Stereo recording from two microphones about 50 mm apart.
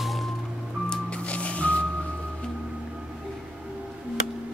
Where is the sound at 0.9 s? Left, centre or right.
Left.